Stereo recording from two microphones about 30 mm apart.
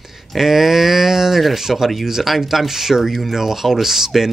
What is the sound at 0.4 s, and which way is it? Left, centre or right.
Speech, centre.